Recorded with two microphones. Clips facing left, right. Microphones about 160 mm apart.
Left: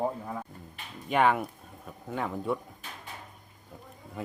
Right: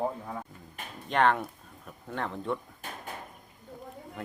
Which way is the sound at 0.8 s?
45° right (ahead or behind).